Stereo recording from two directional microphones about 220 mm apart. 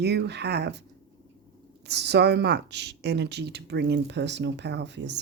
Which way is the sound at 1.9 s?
50° right (ahead or behind).